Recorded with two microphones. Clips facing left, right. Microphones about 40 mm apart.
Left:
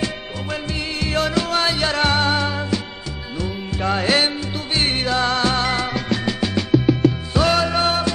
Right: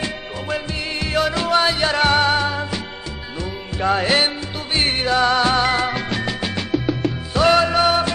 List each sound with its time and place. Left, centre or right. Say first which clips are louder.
1.0 s music: right 1 dB; centre
5.9 s music: left 1 dB; right
7.4 s music: right 4 dB; centre
7.7 s music: right 3 dB; centre